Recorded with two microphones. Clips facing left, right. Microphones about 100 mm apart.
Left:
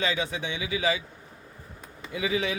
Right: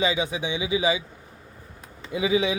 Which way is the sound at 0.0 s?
15° right (ahead or behind).